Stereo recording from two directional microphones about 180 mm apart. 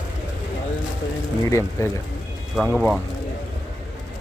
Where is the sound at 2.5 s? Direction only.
Centre (ahead or behind).